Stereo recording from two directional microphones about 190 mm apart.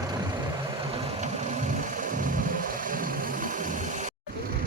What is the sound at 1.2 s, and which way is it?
Vehicle, 40° right (ahead or behind).